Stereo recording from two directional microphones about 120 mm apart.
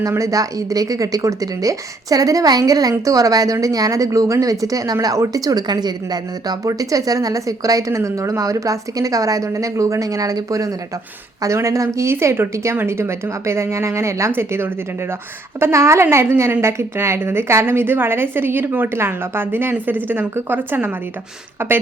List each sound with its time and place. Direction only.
0.0 s speech: 30° right (ahead or behind)